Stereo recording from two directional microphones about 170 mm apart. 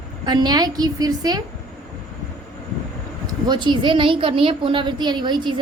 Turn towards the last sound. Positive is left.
turn(degrees=-25)  # may be behind; listen again after turning